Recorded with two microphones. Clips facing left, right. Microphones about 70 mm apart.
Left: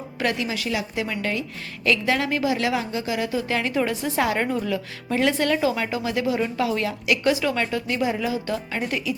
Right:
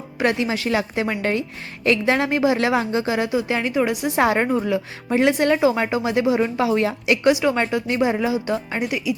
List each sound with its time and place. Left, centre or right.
0.2 s a woman's voice: right
3.2 s speech: centre
4.2 s speech: right
8.8 s speech: centre